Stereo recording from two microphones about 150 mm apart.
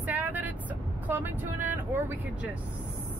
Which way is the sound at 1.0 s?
10° right (ahead or behind).